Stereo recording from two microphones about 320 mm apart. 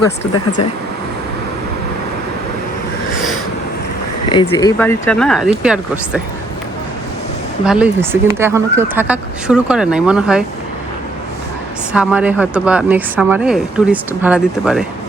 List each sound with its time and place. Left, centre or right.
4.3 s speech: centre
7.6 s speech: centre
11.9 s speech: centre